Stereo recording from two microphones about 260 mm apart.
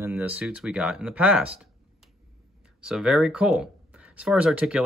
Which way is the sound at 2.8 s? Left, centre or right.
Centre.